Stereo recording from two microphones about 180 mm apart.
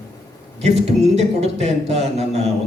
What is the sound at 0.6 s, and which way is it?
A man's voice, 35° right (ahead or behind).